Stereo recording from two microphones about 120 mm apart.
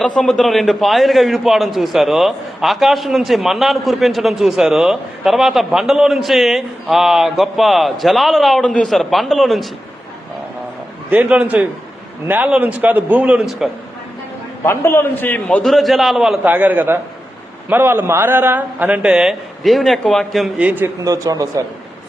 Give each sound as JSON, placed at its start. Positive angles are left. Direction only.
{"t": 0.2, "sound": "a man's voice", "side_deg": 5}
{"t": 11.1, "sound": "a man's voice", "side_deg": -10}
{"t": 14.6, "sound": "a man's voice", "side_deg": 20}
{"t": 16.4, "sound": "a man's voice", "side_deg": -15}
{"t": 20.6, "sound": "a man's voice", "side_deg": -15}
{"t": 21.0, "sound": "speech", "side_deg": -30}